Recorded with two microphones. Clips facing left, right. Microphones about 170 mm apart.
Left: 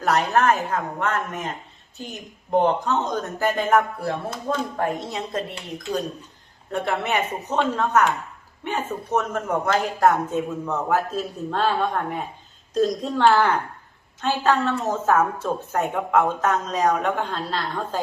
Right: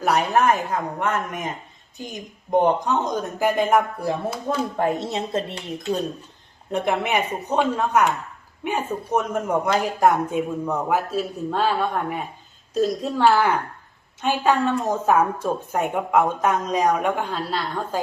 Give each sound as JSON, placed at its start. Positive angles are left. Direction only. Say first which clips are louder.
{"t": 0.0, "sound": "a woman's voice", "louder": "right 1 dB", "side_deg": -10}
{"t": 4.8, "sound": "a woman's voice", "louder": "right 3 dB", "side_deg": -25}